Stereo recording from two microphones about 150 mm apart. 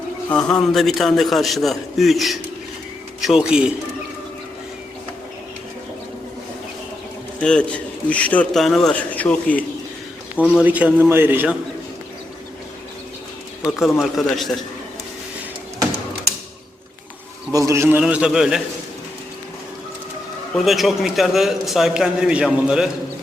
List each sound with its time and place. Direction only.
0.3 s a man's voice: 5° left (ahead or behind)
7.4 s a man's voice: 5° left (ahead or behind)
10.3 s a man's voice: 10° right (ahead or behind)
13.7 s a man's voice: 5° right (ahead or behind)
17.5 s speech: 20° right (ahead or behind)
18.0 s a man's voice: 5° right (ahead or behind)
20.7 s a man's voice: centre (ahead or behind)